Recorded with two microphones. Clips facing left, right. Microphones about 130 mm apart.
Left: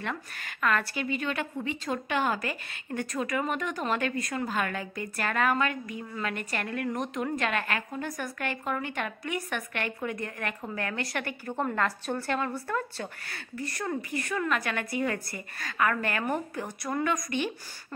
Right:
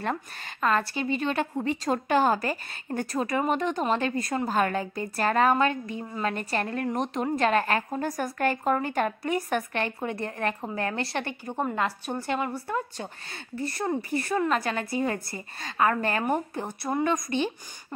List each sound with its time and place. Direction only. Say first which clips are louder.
0.0 s a woman's voice: right 5 dB; 35° right (ahead or behind)
11.4 s a woman's voice: even; 15° right (ahead or behind)